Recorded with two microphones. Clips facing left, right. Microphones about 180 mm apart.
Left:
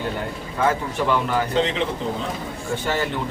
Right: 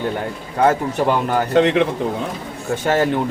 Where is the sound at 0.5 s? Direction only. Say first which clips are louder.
Right 6 dB; 45° right (ahead or behind).